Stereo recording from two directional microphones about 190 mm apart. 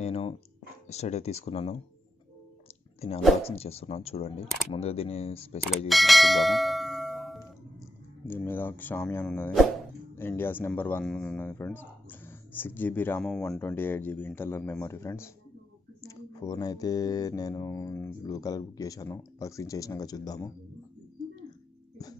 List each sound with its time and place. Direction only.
0.0 s a sound: 30° left (ahead or behind)
0.8 s speech: 35° left (ahead or behind)
3.4 s speech: 30° left (ahead or behind)
5.9 s bell: centre (ahead or behind)
8.3 s speech: 10° left (ahead or behind)